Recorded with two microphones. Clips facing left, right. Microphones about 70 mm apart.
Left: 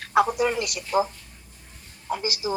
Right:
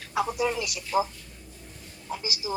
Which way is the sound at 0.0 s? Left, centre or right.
Left.